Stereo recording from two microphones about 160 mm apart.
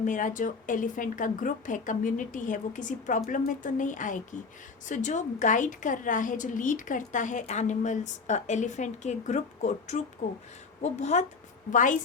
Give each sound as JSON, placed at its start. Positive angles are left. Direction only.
{"t": 0.0, "sound": "a woman's voice", "side_deg": 55}